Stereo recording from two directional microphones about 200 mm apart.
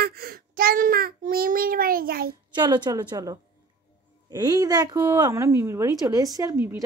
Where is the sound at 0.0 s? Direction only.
50° right (ahead or behind).